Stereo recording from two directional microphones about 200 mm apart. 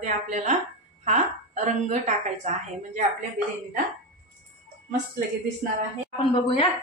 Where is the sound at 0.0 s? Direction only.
40° right (ahead or behind).